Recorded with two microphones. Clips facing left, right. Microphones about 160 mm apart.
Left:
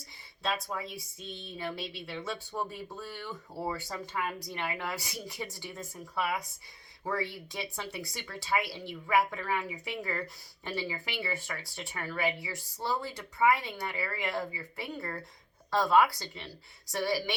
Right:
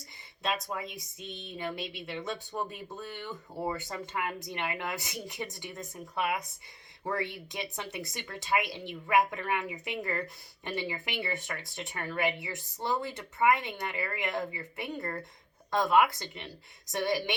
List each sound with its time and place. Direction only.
0.4 s speech: 20° right (ahead or behind)